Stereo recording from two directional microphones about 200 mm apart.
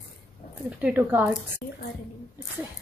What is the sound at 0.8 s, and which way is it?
Speech, 10° right (ahead or behind).